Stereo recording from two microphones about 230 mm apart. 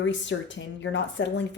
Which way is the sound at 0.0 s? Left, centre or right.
Left.